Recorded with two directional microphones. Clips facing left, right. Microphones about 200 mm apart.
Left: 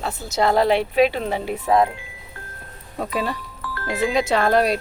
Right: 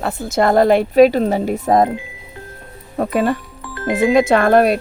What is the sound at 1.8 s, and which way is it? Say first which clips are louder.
Music: right 6 dB; 20° right (ahead or behind).